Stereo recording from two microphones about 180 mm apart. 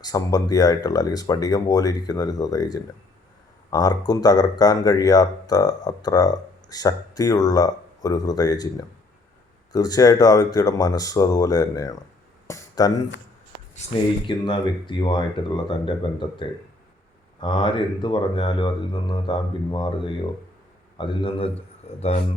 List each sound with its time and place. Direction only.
0.0 s speech: 20° left (ahead or behind)
9.7 s speech: 20° left (ahead or behind)
12.5 s a sound: 20° left (ahead or behind)
13.8 s speech: 40° left (ahead or behind)
14.3 s speech: 25° left (ahead or behind)
17.4 s a man's voice: 30° left (ahead or behind)